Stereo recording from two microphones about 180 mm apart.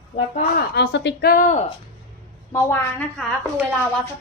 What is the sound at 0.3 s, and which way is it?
Speech, 65° left (ahead or behind).